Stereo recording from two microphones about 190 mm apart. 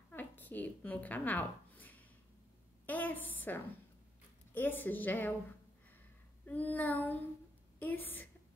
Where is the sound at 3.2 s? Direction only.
90° left.